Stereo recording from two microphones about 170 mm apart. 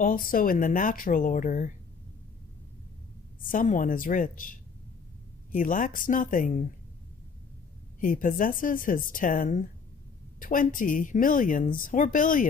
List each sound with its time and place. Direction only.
0.0 s speech: 55° left (ahead or behind)
3.4 s speech: 50° left (ahead or behind)
8.0 s speech: 55° left (ahead or behind)